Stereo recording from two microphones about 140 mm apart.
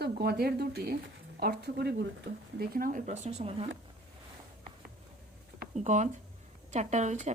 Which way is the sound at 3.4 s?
45° right (ahead or behind).